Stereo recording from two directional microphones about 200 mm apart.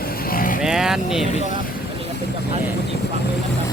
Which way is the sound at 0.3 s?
45° left (ahead or behind).